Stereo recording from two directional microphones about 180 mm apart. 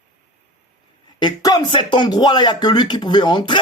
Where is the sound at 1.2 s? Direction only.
25° left (ahead or behind).